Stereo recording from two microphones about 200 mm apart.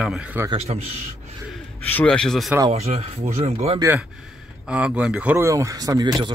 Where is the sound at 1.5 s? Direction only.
5° left (ahead or behind).